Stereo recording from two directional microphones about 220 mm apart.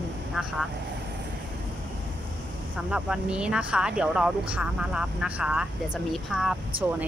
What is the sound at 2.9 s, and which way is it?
Speech, 5° right (ahead or behind).